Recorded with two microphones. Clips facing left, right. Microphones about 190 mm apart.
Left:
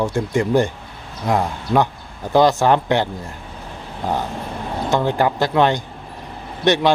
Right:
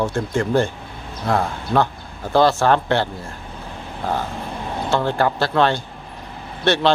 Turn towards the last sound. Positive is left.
turn(degrees=15)  # may be behind; listen again after turning